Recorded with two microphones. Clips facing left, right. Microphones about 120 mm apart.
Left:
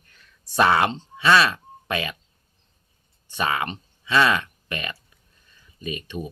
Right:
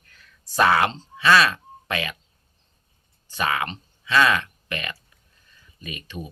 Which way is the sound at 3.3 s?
25° left (ahead or behind).